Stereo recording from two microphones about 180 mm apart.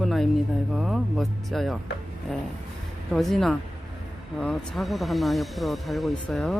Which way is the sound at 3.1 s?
Centre (ahead or behind).